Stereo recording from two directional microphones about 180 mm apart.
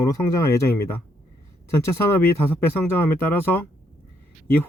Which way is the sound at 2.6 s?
10° left (ahead or behind).